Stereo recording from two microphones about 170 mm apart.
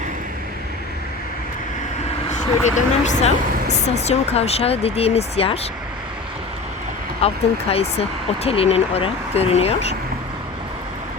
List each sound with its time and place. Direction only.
2.6 s speech: 45° left (ahead or behind)
7.2 s speech: 35° left (ahead or behind)